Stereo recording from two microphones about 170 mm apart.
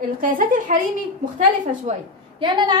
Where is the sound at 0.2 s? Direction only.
55° right (ahead or behind).